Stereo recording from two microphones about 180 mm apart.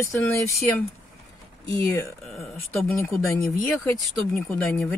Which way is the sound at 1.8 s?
15° left (ahead or behind).